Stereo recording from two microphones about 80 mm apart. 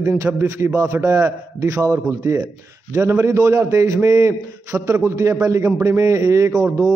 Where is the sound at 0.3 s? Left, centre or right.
Right.